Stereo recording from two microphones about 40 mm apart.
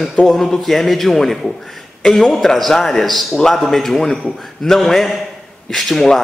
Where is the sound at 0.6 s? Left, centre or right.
Centre.